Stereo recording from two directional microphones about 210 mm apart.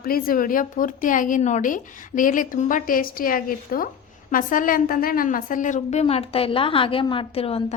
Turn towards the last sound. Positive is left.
turn(degrees=30)  # may be behind; listen again after turning